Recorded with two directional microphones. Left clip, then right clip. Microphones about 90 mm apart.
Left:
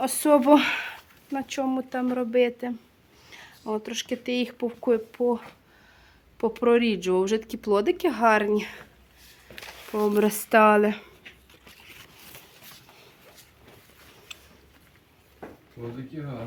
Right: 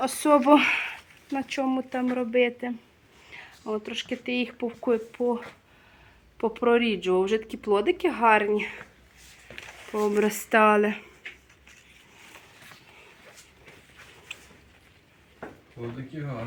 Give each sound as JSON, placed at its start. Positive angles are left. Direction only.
{"t": 0.0, "sound": "speech", "side_deg": 10}
{"t": 3.2, "sound": "speech", "side_deg": 25}
{"t": 4.8, "sound": "speech", "side_deg": 10}
{"t": 9.9, "sound": "speech", "side_deg": 35}